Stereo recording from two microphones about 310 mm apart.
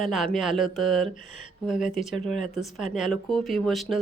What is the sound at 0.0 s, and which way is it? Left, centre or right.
Speech, centre.